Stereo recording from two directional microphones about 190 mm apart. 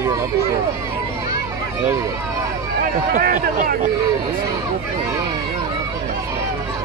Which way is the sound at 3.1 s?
45° right (ahead or behind).